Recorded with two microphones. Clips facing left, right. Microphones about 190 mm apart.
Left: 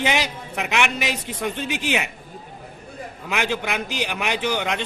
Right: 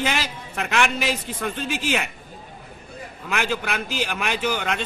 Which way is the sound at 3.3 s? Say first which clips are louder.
Left 1 dB; 15° left (ahead or behind).